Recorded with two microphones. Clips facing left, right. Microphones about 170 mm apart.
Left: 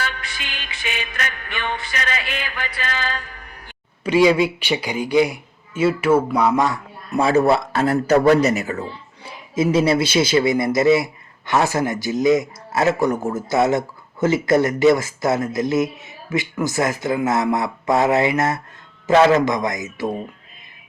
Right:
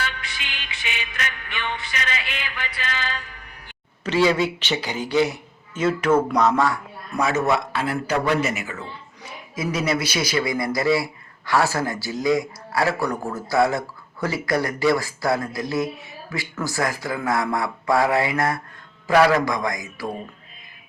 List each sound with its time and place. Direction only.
0.0 s music: 45° left (ahead or behind)
4.0 s a man's voice: 10° left (ahead or behind)
6.7 s a man's voice: 25° left (ahead or behind)
9.6 s speech: 25° left (ahead or behind)